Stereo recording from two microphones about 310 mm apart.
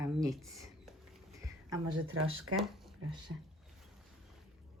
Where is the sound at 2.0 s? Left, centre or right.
Right.